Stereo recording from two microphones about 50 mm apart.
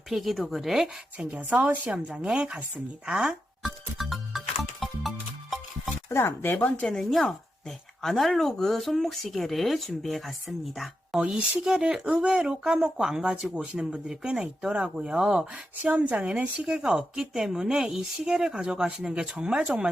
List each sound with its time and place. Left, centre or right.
0.1 s speech: centre
1.4 s speech: right
3.6 s music: centre
6.1 s speech: left
7.0 s speech: centre
11.2 s speech: centre
12.2 s speech: right
14.1 s speech: centre
15.8 s speech: right